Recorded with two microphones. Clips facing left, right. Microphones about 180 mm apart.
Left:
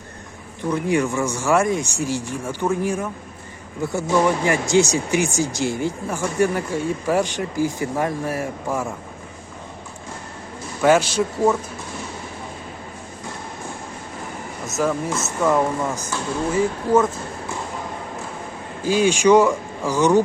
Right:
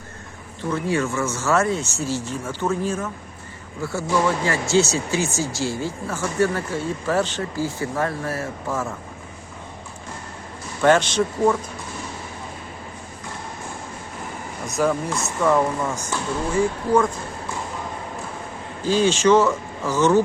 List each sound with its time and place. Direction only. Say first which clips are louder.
0.7 s speech: left 2 dB; 15° left (ahead or behind)
10.8 s speech: left 1 dB; 10° left (ahead or behind)
14.7 s speech: even; centre (ahead or behind)
18.9 s speech: left 1 dB; 10° left (ahead or behind)